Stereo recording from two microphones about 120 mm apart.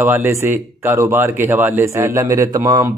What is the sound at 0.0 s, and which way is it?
Speech, 15° right (ahead or behind).